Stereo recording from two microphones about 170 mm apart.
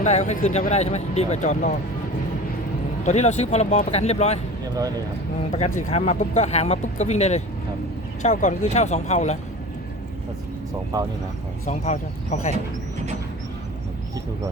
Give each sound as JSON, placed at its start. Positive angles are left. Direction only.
{"t": 0.0, "sound": "speech", "side_deg": 40}
{"t": 3.0, "sound": "speech", "side_deg": 45}
{"t": 5.5, "sound": "speech", "side_deg": 40}
{"t": 10.9, "sound": "speech", "side_deg": -20}
{"t": 11.6, "sound": "speech", "side_deg": 40}